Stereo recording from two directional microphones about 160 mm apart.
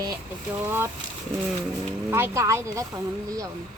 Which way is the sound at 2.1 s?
15° right (ahead or behind).